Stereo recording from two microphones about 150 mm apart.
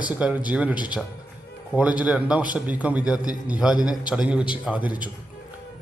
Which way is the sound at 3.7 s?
25° left (ahead or behind).